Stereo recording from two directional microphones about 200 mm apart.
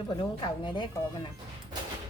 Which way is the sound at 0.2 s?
20° left (ahead or behind).